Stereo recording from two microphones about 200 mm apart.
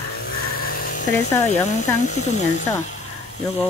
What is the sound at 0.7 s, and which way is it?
Electric toothbrush, 45° left (ahead or behind).